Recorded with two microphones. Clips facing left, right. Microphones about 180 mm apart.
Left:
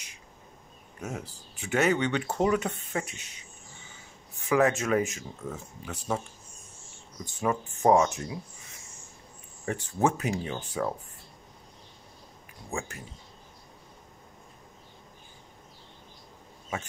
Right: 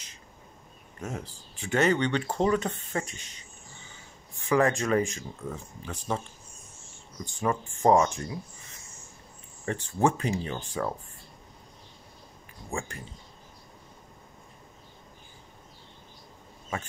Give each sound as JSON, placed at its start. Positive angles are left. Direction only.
{"t": 0.9, "sound": "speech", "side_deg": 5}
{"t": 4.5, "sound": "speech", "side_deg": 5}
{"t": 7.2, "sound": "speech", "side_deg": 5}
{"t": 9.7, "sound": "speech", "side_deg": 5}
{"t": 12.6, "sound": "speech", "side_deg": 5}